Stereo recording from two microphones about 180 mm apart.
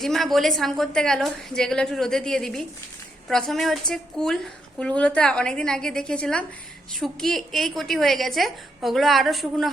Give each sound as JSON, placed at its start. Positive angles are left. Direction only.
{"t": 0.0, "sound": "a woman's voice", "side_deg": 0}